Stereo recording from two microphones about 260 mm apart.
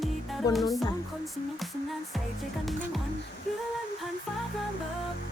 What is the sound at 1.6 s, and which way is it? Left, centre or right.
Music, centre.